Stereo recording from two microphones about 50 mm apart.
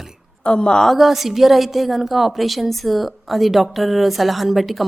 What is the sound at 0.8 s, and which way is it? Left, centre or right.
A woman's voice, centre.